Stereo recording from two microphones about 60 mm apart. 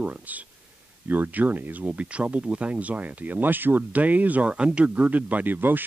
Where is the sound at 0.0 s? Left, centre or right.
Right.